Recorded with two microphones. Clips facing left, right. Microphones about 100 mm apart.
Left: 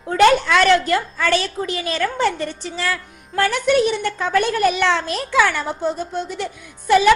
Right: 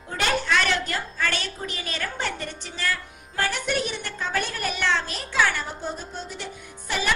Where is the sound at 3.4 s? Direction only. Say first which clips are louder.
Left 9 dB; 90° left.